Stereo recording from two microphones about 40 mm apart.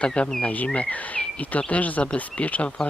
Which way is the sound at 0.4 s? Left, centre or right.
Left.